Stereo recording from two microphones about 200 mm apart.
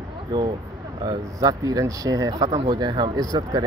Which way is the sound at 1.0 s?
20° right (ahead or behind).